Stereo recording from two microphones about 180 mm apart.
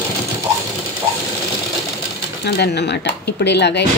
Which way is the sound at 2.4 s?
70° left (ahead or behind).